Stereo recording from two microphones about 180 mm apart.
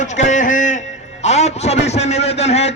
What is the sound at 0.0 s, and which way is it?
A man's voice, 45° left (ahead or behind).